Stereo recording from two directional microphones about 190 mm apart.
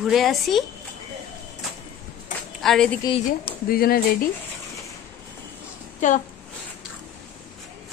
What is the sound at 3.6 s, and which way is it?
Speech, 50° left (ahead or behind).